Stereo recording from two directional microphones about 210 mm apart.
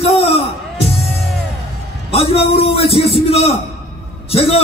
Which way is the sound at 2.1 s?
25° left (ahead or behind).